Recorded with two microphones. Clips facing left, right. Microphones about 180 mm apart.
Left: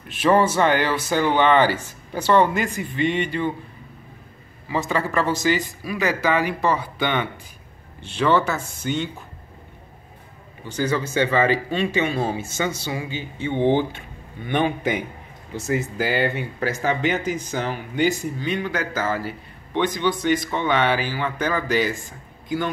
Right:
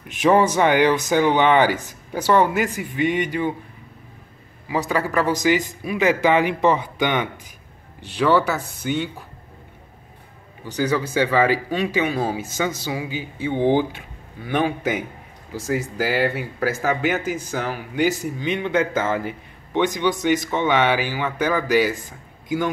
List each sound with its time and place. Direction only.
0.1 s speech: 15° right (ahead or behind)
4.6 s speech: 10° right (ahead or behind)
10.6 s speech: 10° right (ahead or behind)
18.4 s a man's voice: 20° right (ahead or behind)